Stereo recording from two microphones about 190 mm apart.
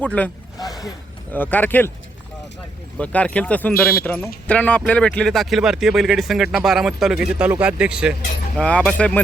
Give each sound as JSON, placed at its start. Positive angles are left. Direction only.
{"t": 0.0, "sound": "speech", "side_deg": 10}
{"t": 0.6, "sound": "a sound", "side_deg": 20}
{"t": 1.3, "sound": "speech", "side_deg": 10}
{"t": 3.0, "sound": "speech", "side_deg": 5}